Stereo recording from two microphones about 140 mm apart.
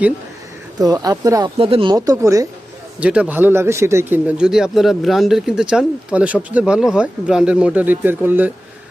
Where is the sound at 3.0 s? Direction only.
10° right (ahead or behind).